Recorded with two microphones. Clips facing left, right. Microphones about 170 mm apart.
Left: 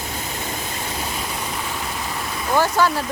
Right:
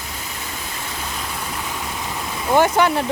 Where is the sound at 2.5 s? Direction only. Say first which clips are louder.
Right 3 dB; 20° right (ahead or behind).